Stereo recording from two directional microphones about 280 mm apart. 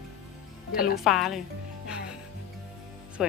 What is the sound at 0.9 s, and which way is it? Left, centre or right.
Speech, centre.